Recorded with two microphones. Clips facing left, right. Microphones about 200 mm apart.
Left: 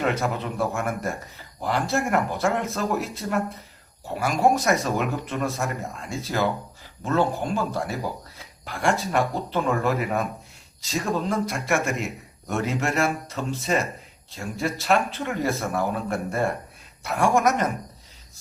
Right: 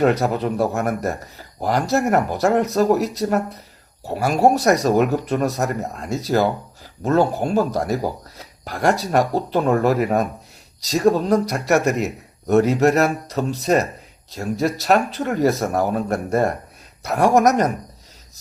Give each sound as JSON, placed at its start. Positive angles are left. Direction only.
{"t": 0.0, "sound": "speech", "side_deg": -40}